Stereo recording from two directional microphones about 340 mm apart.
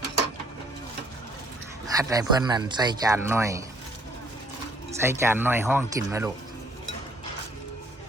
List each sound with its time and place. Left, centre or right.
2.0 s speech: centre
4.9 s speech: centre